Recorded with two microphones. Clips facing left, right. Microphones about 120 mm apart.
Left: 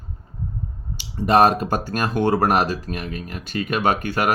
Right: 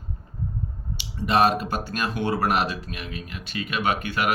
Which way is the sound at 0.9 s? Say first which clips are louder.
Left 5 dB; 45° left (ahead or behind).